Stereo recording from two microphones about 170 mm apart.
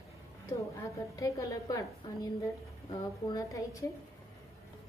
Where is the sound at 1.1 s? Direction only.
20° left (ahead or behind).